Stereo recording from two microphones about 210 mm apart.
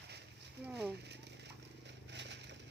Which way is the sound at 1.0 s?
55° right (ahead or behind).